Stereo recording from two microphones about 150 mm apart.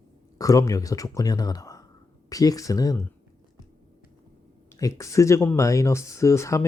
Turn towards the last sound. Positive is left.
turn(degrees=20)  # may be behind; listen again after turning